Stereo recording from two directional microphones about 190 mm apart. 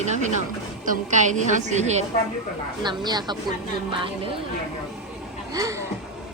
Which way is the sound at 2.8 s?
20° right (ahead or behind).